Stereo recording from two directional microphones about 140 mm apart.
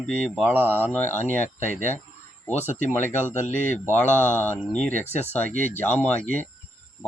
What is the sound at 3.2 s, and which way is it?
Speech, 55° left (ahead or behind).